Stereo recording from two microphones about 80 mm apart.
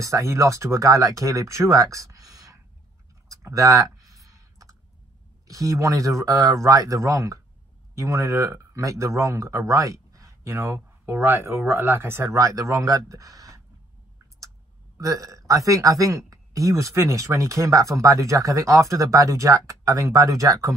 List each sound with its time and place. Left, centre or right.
0.0 s speech: right
3.5 s clicking: right
5.5 s speech: right
12.4 s speech: right
15.0 s speech: right